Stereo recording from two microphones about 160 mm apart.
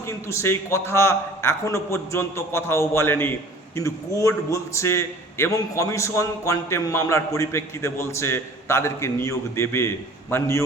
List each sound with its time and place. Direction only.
0.1 s a man's voice: 15° left (ahead or behind)